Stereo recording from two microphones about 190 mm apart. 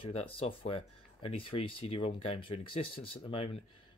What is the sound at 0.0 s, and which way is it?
Speech, 30° left (ahead or behind).